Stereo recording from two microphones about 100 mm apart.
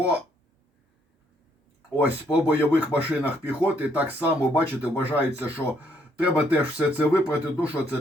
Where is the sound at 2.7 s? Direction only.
15° right (ahead or behind).